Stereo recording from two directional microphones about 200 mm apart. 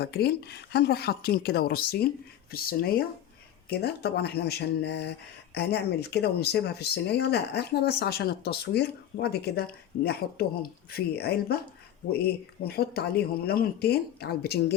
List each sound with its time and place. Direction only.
0.0 s speech: 55° left (ahead or behind)